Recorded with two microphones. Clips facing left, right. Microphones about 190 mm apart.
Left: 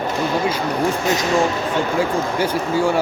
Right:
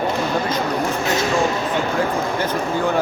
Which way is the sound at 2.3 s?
10° left (ahead or behind).